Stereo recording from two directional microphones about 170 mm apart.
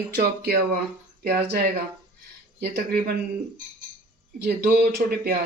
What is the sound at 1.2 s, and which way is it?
Speech, 75° right (ahead or behind).